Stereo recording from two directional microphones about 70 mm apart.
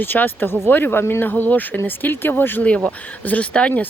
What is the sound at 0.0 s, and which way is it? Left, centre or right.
Speech, left.